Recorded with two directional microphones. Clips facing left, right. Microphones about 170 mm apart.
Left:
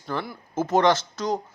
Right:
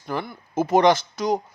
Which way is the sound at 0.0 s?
10° right (ahead or behind).